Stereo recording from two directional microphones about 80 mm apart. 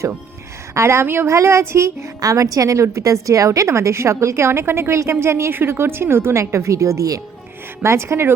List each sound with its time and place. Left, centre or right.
0.7 s a woman's voice: right